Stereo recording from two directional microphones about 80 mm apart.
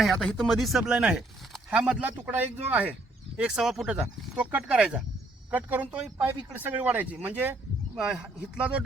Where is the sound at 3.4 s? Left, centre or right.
Centre.